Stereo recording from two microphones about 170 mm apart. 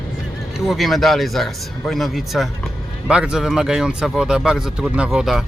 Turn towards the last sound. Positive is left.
turn(degrees=-5)  # may be behind; listen again after turning